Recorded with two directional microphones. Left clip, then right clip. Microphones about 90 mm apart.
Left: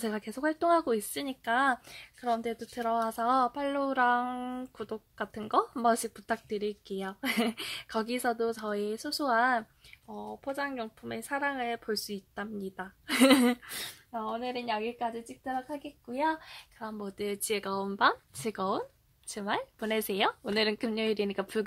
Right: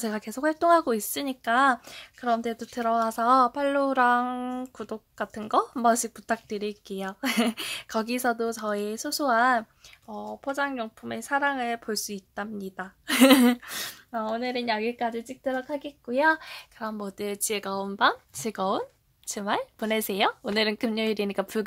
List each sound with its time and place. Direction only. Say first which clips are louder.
0.0 s speech: right 4 dB; 10° right (ahead or behind)
10.0 s speech: right 5 dB; 30° right (ahead or behind)
13.7 s speech: right 5 dB; 30° right (ahead or behind)
14.1 s a woman's voice: right 6 dB; 60° right (ahead or behind); by 15.0 s 90° right
16.3 s speech: right 8 dB; 90° right
17.2 s speech: right 2 dB; 15° right (ahead or behind)
19.2 s speech: right 5 dB; 30° right (ahead or behind)